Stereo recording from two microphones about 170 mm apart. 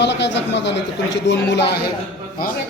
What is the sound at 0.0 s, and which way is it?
Speech, 90° left.